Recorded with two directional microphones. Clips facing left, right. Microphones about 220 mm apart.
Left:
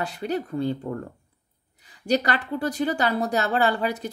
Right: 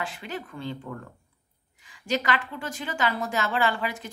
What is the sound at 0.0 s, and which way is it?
A woman's voice, 40° left (ahead or behind).